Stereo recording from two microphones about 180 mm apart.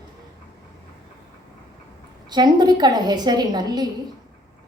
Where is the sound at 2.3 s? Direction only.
25° right (ahead or behind).